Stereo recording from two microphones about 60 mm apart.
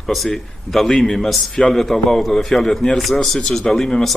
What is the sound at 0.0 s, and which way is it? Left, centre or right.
A man's voice, centre.